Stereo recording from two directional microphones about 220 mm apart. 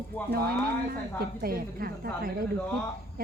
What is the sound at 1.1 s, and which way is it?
A woman's voice, 40° right (ahead or behind).